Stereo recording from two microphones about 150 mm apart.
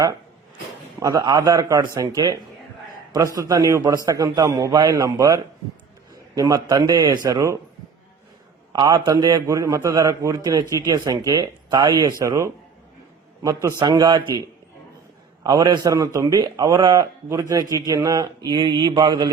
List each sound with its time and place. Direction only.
0.9 s a man's voice: 25° right (ahead or behind)
8.7 s a man's voice: 30° right (ahead or behind)
15.4 s a man's voice: 30° right (ahead or behind)